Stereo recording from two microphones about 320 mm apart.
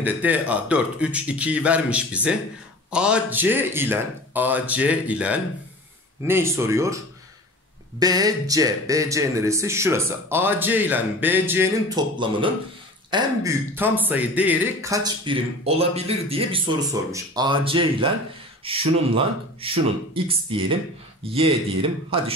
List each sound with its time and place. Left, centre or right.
0.0 s speech: centre
8.0 s speech: centre